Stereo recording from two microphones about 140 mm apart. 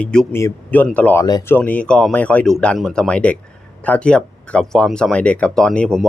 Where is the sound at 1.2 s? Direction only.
25° left (ahead or behind).